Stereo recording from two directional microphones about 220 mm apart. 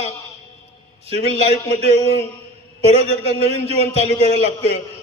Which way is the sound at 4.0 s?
30° left (ahead or behind).